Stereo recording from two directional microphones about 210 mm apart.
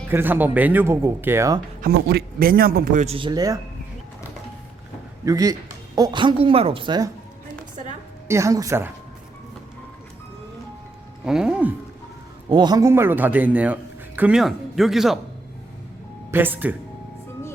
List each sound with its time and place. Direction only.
0.1 s speech: 10° right (ahead or behind)
1.8 s a man's voice: 50° right (ahead or behind); by 3.6 s 15° right (ahead or behind)
5.2 s a woman's voice: 15° right (ahead or behind)
8.3 s speech: 15° right (ahead or behind)
11.3 s speech: 5° right (ahead or behind)
12.5 s speech: 20° right (ahead or behind); by 15.2 s centre (ahead or behind)
16.3 s speech: 10° right (ahead or behind)